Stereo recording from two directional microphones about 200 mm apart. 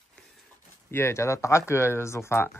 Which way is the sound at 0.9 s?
10° left (ahead or behind).